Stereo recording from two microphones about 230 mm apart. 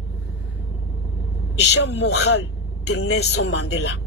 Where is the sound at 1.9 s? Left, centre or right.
Left.